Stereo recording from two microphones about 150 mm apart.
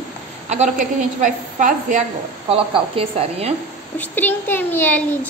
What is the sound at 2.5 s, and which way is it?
Speech, 40° right (ahead or behind).